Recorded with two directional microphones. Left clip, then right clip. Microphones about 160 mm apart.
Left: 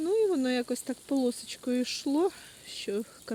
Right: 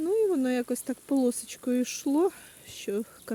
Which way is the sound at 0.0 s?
25° right (ahead or behind).